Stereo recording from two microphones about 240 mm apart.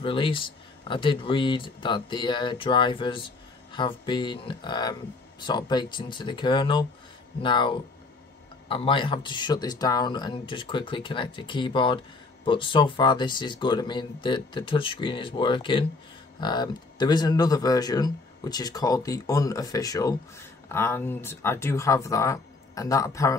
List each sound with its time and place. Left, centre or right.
0.0 s speech: left